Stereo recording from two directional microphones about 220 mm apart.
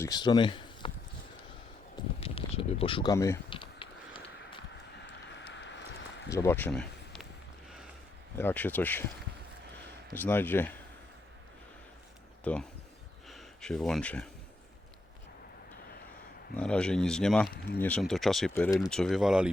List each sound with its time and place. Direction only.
0.0 s speech: 20° left (ahead or behind)
2.2 s a sound: 25° left (ahead or behind)
5.0 s a sound: 55° left (ahead or behind)
6.3 s speech: 10° left (ahead or behind)
8.4 s speech: 10° left (ahead or behind)
10.2 s speech: 10° left (ahead or behind)
12.5 s speech: 5° left (ahead or behind)
16.6 s speech: 5° left (ahead or behind)
18.5 s speech: 15° left (ahead or behind)
18.9 s speech: centre (ahead or behind)